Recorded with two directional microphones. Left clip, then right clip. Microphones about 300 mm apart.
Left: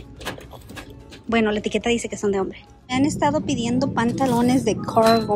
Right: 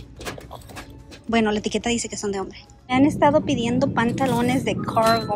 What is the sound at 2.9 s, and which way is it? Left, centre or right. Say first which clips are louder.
A woman's voice: right 3 dB; centre.